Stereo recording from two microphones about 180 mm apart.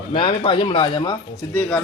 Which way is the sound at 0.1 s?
25° left (ahead or behind).